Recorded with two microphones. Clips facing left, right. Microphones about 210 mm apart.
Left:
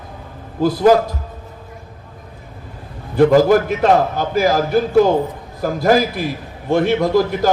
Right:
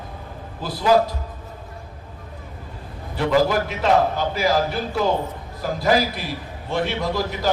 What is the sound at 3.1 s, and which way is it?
A man's voice, 50° left (ahead or behind).